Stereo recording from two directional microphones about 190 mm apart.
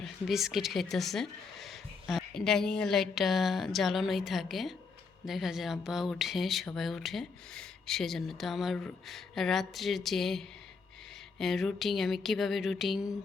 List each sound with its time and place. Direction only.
0.0 s speech: centre (ahead or behind)